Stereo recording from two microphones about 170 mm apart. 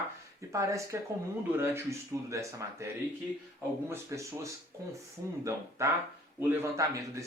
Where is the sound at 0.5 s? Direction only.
20° right (ahead or behind).